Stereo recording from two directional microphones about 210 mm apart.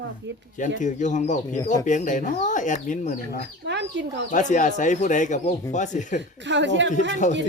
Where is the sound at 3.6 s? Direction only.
55° right (ahead or behind).